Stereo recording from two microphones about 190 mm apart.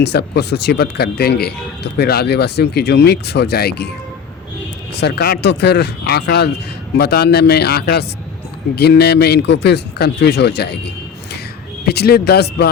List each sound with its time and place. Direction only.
0.0 s speech: 60° left (ahead or behind)
4.9 s speech: 60° left (ahead or behind)